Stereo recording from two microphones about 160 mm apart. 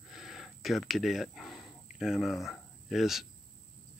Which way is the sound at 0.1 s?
Centre (ahead or behind).